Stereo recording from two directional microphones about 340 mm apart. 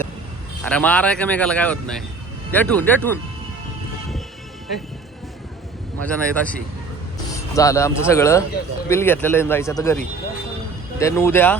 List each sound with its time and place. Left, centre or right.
0.6 s speech: centre
6.1 s speech: centre
11.0 s speech: centre